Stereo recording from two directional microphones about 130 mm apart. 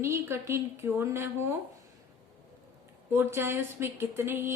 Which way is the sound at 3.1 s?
20° right (ahead or behind).